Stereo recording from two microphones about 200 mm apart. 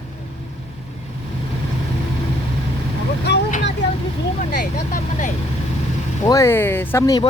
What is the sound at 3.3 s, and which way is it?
Vehicle, 60° left (ahead or behind).